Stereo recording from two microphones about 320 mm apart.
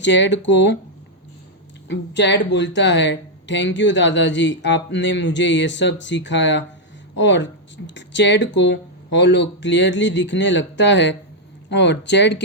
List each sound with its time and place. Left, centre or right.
0.0 s speech: left
1.9 s speech: left